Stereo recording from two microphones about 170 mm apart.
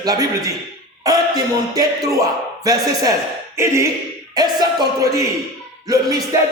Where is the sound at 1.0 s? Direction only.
20° right (ahead or behind).